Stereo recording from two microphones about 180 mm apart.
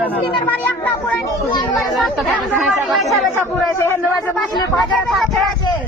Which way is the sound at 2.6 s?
5° right (ahead or behind).